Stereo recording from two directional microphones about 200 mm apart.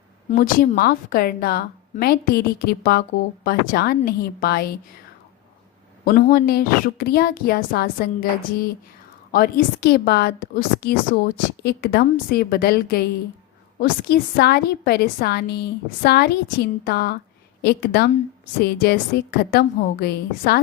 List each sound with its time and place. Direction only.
0.3 s a woman's voice: 45° left (ahead or behind)
6.1 s a woman's voice: 45° left (ahead or behind)